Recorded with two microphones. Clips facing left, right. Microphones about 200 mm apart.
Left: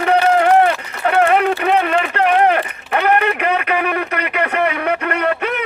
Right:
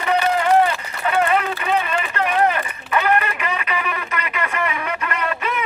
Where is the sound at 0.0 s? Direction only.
65° left (ahead or behind).